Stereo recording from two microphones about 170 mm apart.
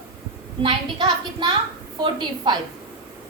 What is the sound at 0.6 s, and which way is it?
A woman's voice, 30° right (ahead or behind).